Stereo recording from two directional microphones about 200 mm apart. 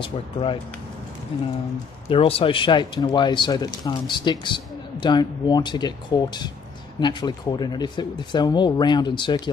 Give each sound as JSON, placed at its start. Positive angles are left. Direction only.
{"t": 0.0, "sound": "speech", "side_deg": 25}